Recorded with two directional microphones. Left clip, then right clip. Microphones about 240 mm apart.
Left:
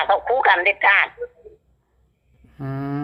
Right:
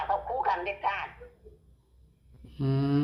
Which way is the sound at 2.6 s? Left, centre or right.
Centre.